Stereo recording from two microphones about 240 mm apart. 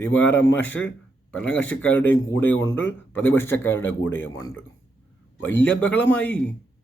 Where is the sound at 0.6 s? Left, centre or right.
Centre.